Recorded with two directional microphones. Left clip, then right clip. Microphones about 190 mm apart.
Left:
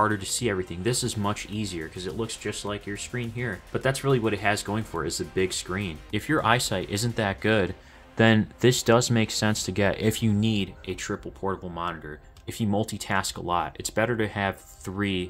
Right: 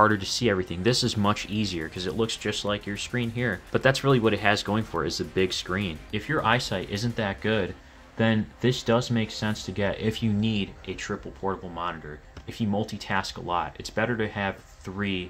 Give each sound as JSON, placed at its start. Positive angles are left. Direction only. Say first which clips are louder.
{"t": 0.0, "sound": "speech", "louder": "right 3 dB", "side_deg": -5}
{"t": 6.1, "sound": "speech", "louder": "left 1 dB", "side_deg": 30}